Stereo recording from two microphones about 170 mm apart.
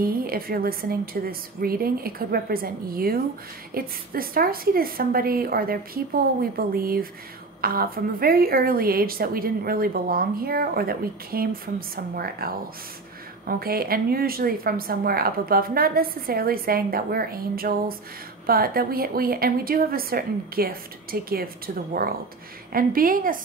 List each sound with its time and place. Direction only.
0.0 s a woman's voice: 60° right (ahead or behind)